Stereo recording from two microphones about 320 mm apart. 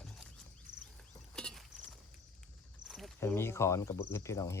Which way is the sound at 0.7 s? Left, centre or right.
Right.